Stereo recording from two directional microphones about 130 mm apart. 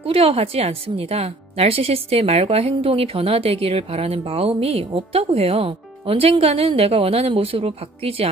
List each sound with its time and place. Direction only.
0.0 s speech: 45° right (ahead or behind)